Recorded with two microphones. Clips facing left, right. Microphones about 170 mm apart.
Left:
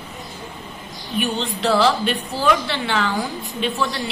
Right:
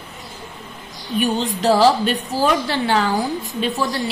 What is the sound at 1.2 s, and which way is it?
A woman's voice, 40° right (ahead or behind).